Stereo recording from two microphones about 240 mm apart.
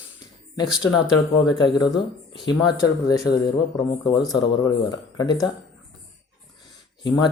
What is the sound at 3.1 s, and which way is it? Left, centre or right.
Speech, centre.